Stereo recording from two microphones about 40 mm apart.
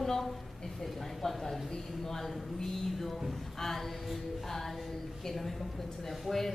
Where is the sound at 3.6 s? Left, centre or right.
Centre.